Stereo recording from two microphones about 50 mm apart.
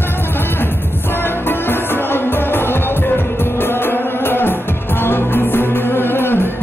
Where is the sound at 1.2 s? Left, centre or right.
Left.